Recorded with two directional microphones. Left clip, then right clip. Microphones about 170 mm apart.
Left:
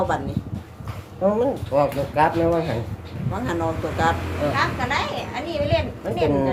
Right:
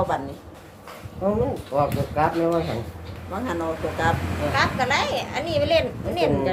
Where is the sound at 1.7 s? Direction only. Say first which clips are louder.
Left 3 dB; 40° left (ahead or behind).